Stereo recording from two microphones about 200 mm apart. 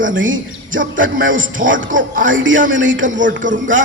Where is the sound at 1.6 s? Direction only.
70° right (ahead or behind).